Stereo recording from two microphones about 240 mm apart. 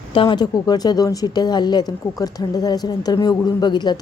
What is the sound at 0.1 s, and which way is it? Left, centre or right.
Speech, left.